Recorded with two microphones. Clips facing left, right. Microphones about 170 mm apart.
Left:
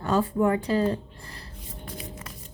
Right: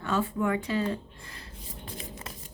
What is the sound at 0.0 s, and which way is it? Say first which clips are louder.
Speech: left 5 dB; 35° left (ahead or behind).